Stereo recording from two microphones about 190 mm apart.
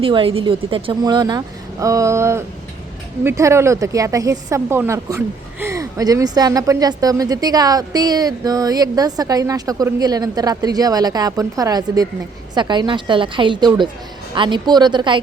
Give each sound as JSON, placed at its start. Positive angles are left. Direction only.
{"t": 0.0, "sound": "speech", "side_deg": -30}